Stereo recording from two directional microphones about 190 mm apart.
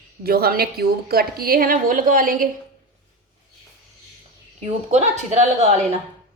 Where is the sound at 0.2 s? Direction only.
55° right (ahead or behind).